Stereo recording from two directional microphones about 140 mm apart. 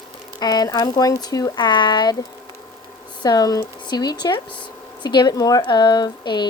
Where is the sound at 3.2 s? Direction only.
30° left (ahead or behind).